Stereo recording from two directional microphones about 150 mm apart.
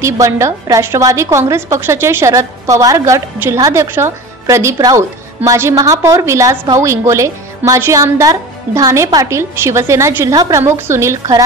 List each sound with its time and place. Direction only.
0.0 s a woman's voice: 20° right (ahead or behind)